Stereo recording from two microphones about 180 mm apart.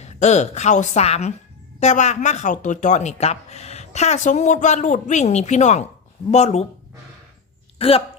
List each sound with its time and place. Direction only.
0.0 s speech: 40° left (ahead or behind)
7.8 s speech: 30° left (ahead or behind)